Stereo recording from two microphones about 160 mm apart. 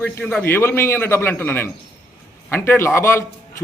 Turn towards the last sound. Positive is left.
turn(degrees=15)  # may be behind; listen again after turning